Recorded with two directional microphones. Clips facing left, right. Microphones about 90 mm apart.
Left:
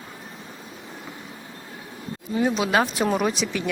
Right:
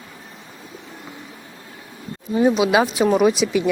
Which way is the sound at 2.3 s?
20° right (ahead or behind).